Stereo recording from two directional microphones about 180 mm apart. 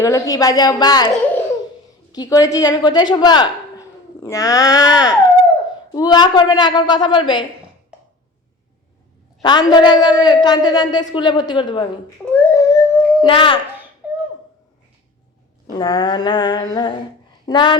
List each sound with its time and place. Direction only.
0.0 s a woman's voice: 20° left (ahead or behind)
2.1 s a woman's voice: 20° left (ahead or behind)
9.4 s a woman's voice: 25° left (ahead or behind)
12.2 s a sound: 10° left (ahead or behind)
13.2 s a woman's voice: 30° left (ahead or behind)
14.0 s a sound: 10° right (ahead or behind)
15.8 s a woman's voice: 25° left (ahead or behind)